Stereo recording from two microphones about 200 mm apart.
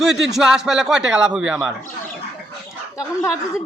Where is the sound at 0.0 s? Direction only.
Centre (ahead or behind).